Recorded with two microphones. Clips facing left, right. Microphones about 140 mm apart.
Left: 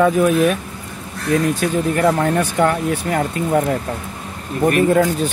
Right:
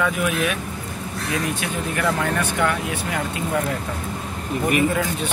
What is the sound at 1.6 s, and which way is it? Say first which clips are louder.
Speech: left 8 dB; 40° left (ahead or behind).